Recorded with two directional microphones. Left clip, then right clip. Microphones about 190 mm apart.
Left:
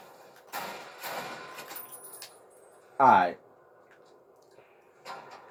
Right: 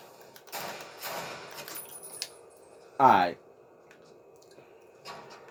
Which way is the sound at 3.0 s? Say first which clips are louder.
Left 1 dB; 45° right (ahead or behind).